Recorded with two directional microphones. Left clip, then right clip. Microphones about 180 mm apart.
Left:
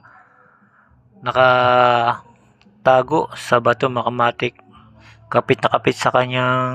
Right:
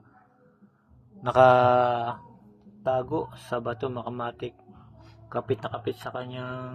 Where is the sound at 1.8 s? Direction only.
5° left (ahead or behind).